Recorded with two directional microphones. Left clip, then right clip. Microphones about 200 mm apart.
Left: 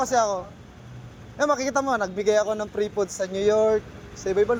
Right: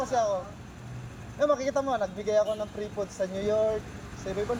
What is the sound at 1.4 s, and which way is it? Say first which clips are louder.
A man's voice: left 3 dB; 65° left (ahead or behind).